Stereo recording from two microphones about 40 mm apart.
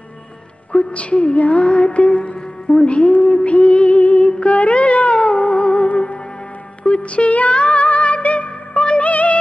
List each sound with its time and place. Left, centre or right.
0.7 s a woman's voice: left
1.3 s music: left